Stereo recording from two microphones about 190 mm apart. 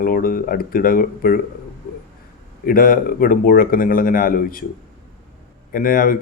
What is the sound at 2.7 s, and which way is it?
Speech, 50° left (ahead or behind).